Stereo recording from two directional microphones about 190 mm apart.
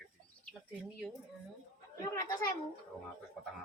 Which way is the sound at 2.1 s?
15° left (ahead or behind).